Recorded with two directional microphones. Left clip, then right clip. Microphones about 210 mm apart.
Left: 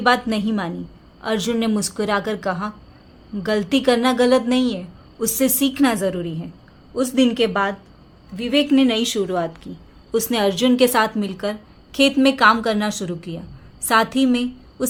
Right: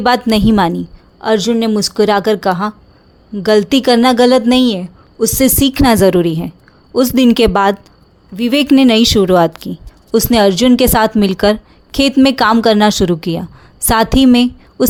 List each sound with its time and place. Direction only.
0.0 s a woman's voice: 45° right (ahead or behind)
1.2 s a woman's voice: 30° right (ahead or behind)